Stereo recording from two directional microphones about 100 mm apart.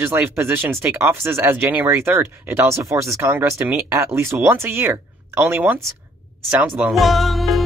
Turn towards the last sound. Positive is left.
turn(degrees=0)  # may be behind; listen again after turning